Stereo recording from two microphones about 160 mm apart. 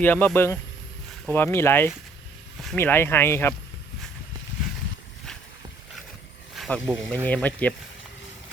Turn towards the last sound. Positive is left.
turn(degrees=10)  # may be behind; listen again after turning